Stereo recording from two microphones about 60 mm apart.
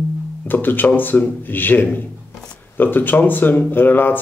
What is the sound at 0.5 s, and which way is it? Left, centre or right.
Speech, left.